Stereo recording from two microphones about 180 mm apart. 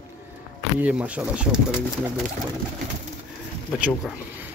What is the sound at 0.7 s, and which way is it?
Speech, 5° right (ahead or behind).